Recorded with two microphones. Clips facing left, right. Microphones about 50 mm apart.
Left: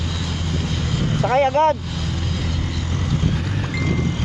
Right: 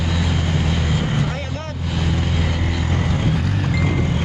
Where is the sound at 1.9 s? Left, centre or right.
Right.